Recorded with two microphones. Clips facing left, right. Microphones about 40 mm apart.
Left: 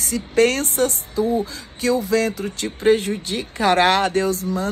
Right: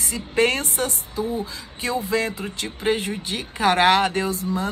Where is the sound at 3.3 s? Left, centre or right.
Right.